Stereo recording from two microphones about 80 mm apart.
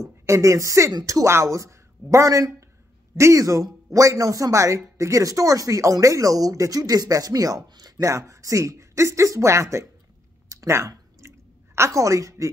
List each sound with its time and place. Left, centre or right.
0.0 s a woman's voice: right
8.0 s speech: right
10.5 s a sound: right
10.9 s chewing: right